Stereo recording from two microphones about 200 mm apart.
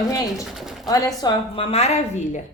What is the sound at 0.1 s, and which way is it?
Speech, 15° left (ahead or behind).